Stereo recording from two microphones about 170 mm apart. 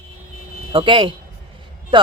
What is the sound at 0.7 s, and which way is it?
A woman's voice, 30° right (ahead or behind).